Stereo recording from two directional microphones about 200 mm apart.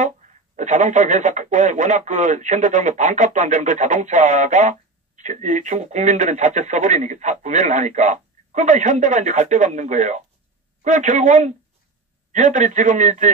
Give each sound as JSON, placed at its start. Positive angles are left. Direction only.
{"t": 0.6, "sound": "speech", "side_deg": -35}